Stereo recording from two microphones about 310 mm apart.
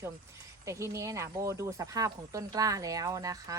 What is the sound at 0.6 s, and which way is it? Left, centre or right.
Speech, centre.